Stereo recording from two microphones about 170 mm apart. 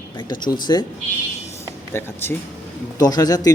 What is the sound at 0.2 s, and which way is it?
Speech, 25° left (ahead or behind).